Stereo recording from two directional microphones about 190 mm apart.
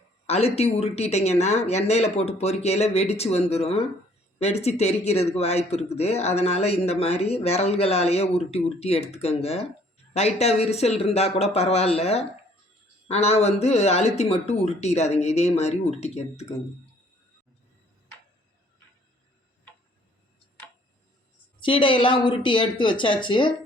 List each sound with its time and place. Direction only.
0.3 s speech: 35° left (ahead or behind)
21.6 s speech: 25° left (ahead or behind)